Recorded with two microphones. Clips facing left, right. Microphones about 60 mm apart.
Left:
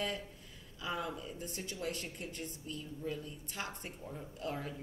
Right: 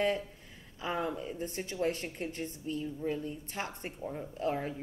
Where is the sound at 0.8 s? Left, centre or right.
Right.